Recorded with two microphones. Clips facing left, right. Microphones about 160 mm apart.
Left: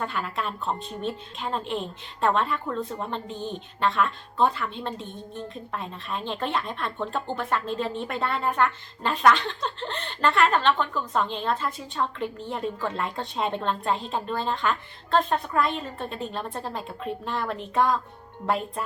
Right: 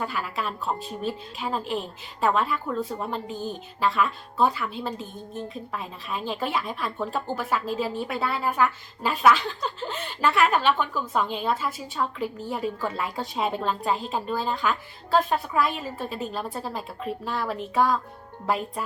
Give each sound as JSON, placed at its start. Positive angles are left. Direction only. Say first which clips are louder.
{"t": 0.0, "sound": "a woman's voice", "louder": "even", "side_deg": -5}